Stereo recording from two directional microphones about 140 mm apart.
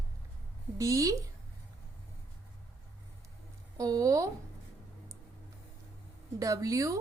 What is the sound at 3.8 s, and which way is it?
Speech, 25° right (ahead or behind).